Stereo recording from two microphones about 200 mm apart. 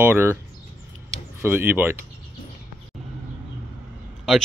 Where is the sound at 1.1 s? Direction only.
10° right (ahead or behind).